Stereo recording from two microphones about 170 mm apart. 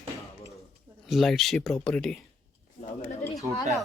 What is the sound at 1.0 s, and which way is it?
A man's voice, centre (ahead or behind).